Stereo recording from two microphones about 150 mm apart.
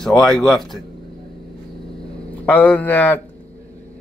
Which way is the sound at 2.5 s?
10° left (ahead or behind).